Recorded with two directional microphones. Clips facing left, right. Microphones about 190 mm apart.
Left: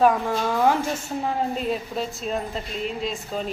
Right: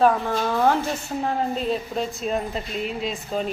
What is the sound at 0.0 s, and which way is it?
A woman's voice, 10° left (ahead or behind).